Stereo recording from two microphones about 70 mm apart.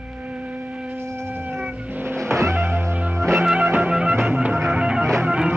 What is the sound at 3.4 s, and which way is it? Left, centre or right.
Music, centre.